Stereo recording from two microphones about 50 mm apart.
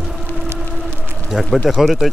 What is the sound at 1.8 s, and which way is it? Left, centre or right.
Speech, centre.